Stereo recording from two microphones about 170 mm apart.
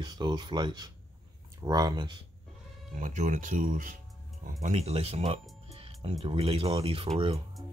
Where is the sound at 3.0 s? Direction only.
45° right (ahead or behind).